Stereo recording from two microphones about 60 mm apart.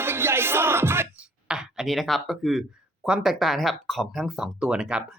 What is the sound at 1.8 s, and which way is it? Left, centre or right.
Speech, centre.